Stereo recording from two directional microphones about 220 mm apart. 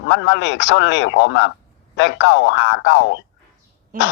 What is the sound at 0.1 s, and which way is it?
Speech, 55° left (ahead or behind).